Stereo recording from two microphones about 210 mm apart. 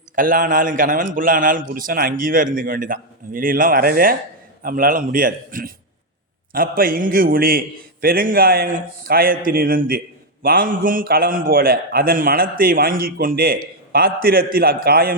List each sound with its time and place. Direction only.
0.2 s a man's voice: 40° right (ahead or behind)